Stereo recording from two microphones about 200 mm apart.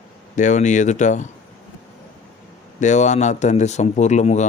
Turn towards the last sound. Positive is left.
turn(degrees=35)  # may be behind; listen again after turning